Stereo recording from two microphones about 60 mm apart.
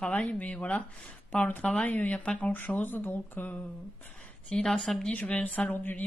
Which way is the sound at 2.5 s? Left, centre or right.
Left.